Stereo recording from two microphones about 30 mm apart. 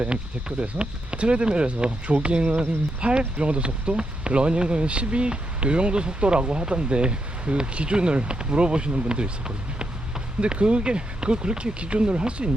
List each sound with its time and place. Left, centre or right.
0.6 s speech: right
10.4 s speech: right